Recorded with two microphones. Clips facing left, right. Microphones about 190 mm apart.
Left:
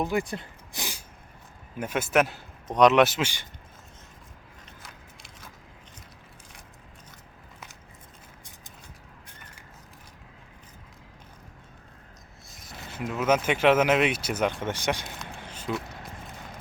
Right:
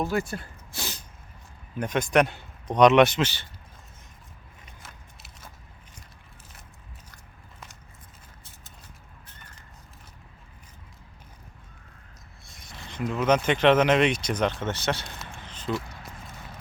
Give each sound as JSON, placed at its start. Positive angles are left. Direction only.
{"t": 0.0, "sound": "a man's voice", "side_deg": 15}
{"t": 4.6, "sound": "biting", "side_deg": -5}
{"t": 12.5, "sound": "speech", "side_deg": 0}
{"t": 15.4, "sound": "a sound", "side_deg": 10}